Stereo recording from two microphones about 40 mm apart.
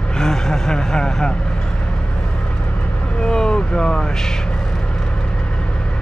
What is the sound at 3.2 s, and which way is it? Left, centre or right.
Vehicle, centre.